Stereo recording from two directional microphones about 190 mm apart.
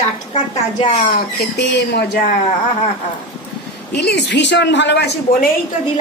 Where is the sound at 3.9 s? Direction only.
65° left (ahead or behind).